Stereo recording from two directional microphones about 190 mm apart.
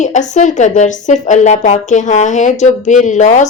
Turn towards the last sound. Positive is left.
turn(degrees=40)  # may be behind; listen again after turning